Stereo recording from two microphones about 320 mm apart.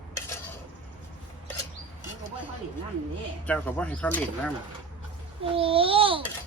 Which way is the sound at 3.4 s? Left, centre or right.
Centre.